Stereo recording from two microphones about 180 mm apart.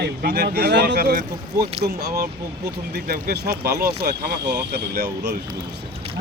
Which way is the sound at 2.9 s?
60° right (ahead or behind).